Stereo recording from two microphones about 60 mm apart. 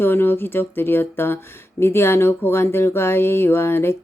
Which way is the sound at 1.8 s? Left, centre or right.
Left.